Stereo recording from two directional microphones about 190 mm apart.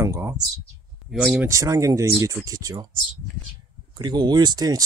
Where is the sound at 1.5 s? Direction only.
15° right (ahead or behind).